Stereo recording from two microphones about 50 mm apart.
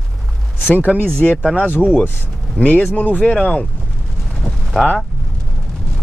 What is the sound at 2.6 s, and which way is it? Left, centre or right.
Speech, left.